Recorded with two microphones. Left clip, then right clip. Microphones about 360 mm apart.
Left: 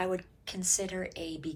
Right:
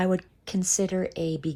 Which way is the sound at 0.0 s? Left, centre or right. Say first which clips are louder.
Right 6 dB; centre.